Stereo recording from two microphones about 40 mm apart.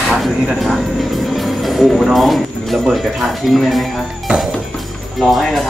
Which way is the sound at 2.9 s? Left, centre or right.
Centre.